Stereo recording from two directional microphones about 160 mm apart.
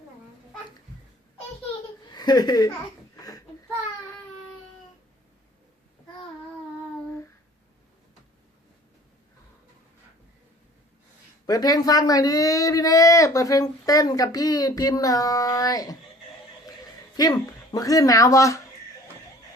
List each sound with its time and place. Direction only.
2.0 s speech: 25° left (ahead or behind)
3.2 s a sound: 20° left (ahead or behind)
11.4 s speech: 25° left (ahead or behind)
17.2 s speech: 25° left (ahead or behind)